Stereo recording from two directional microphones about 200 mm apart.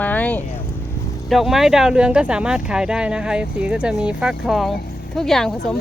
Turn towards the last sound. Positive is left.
turn(degrees=0)  # may be behind; listen again after turning